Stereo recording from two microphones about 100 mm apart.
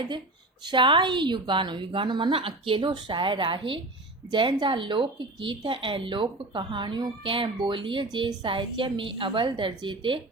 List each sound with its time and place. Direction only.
0.7 s a woman's voice: 55° right (ahead or behind)
8.0 s a woman's voice: 45° right (ahead or behind)